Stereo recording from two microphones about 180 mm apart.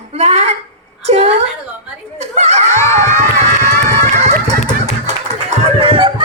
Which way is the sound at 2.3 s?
40° right (ahead or behind).